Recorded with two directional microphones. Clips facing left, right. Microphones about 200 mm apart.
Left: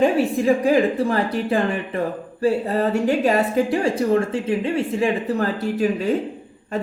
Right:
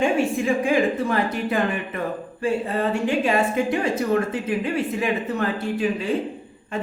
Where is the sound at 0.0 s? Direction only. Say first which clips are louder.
Left 3 dB; 35° left (ahead or behind).